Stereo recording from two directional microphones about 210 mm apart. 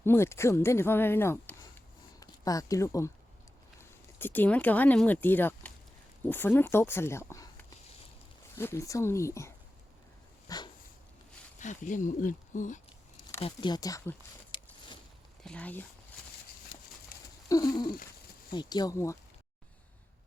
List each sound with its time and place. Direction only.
0.0 s speech: 10° left (ahead or behind)
10.5 s speech: 15° left (ahead or behind)
11.6 s speech: 35° left (ahead or behind)
13.4 s speech: 20° left (ahead or behind)
15.4 s speech: 5° left (ahead or behind)
17.5 s speech: 20° left (ahead or behind)